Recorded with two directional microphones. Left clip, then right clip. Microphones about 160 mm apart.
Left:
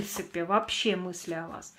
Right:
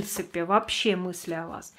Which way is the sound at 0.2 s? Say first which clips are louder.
Right 3 dB; 20° right (ahead or behind).